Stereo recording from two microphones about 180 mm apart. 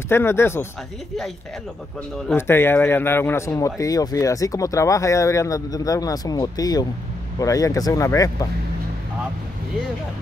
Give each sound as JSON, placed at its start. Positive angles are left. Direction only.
{"t": 0.1, "sound": "speech", "side_deg": 15}
{"t": 2.2, "sound": "speech", "side_deg": 15}